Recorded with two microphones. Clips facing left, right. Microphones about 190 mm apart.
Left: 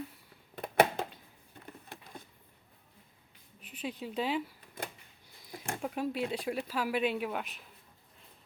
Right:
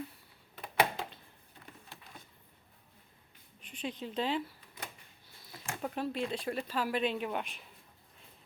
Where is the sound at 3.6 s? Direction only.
5° left (ahead or behind).